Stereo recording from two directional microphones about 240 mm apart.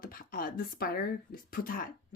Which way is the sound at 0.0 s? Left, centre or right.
Left.